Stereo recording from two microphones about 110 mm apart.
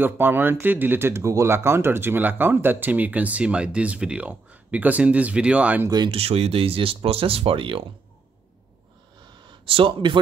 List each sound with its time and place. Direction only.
0.0 s speech: 20° right (ahead or behind)
6.0 s speech: 60° right (ahead or behind)
9.5 s speech: 50° right (ahead or behind)